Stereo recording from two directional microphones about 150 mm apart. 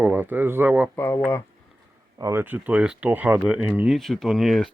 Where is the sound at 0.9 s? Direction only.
15° left (ahead or behind).